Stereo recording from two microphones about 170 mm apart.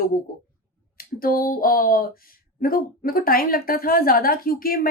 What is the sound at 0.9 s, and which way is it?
A woman's voice, 60° left (ahead or behind).